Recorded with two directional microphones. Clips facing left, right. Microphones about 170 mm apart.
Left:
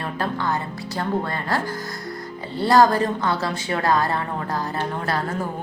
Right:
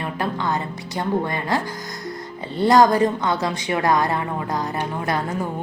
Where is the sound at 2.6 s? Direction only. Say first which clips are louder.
Right 2 dB; 20° right (ahead or behind).